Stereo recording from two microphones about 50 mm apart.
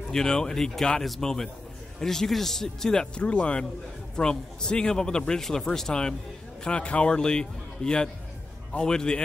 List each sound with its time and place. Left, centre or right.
0.1 s speech: centre
3.2 s speech: left